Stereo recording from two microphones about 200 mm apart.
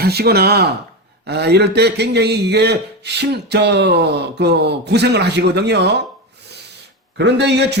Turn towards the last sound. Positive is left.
turn(degrees=-60)  # may be behind; listen again after turning